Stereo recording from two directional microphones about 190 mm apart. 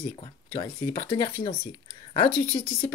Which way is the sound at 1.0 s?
25° left (ahead or behind).